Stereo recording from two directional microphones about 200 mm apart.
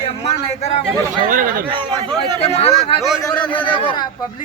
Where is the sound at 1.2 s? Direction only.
40° right (ahead or behind).